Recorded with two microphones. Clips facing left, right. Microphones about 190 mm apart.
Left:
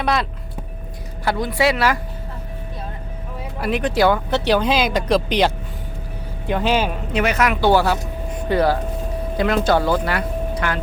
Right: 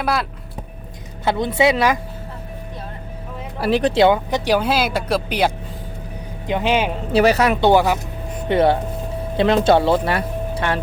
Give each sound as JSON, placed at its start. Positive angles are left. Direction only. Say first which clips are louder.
{"t": 0.0, "sound": "speech", "louder": "left 1 dB", "side_deg": -5}
{"t": 1.2, "sound": "speech", "louder": "right 2 dB", "side_deg": -20}
{"t": 3.6, "sound": "speech", "louder": "right 3 dB", "side_deg": -30}
{"t": 6.5, "sound": "speech", "louder": "even", "side_deg": -15}
{"t": 7.1, "sound": "speech", "louder": "right 5 dB", "side_deg": -35}